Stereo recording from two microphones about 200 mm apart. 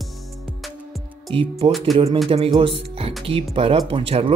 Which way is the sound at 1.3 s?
25° right (ahead or behind).